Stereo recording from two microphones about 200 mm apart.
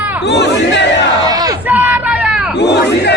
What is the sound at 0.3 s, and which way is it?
Battle cry, 60° left (ahead or behind).